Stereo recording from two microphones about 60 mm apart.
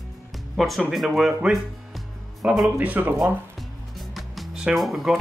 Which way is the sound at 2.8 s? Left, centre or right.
Right.